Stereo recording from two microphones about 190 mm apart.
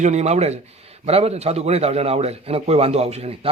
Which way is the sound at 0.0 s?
35° right (ahead or behind).